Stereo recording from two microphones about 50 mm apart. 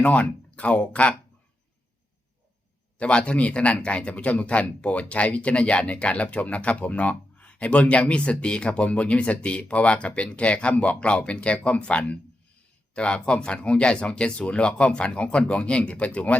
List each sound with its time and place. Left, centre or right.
0.0 s speech: left
3.0 s speech: left